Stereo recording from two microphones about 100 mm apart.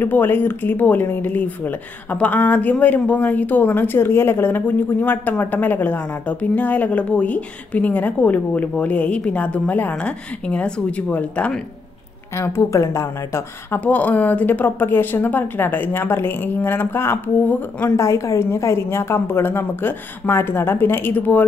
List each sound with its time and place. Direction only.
0.0 s speech: 20° left (ahead or behind)
12.4 s speech: 30° left (ahead or behind)
13.7 s speech: 15° left (ahead or behind)
17.9 s speech: 30° left (ahead or behind)